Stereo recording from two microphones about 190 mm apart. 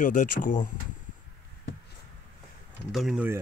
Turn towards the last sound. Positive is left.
turn(degrees=-5)  # may be behind; listen again after turning